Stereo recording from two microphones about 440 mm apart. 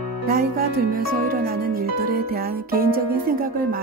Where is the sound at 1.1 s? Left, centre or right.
Centre.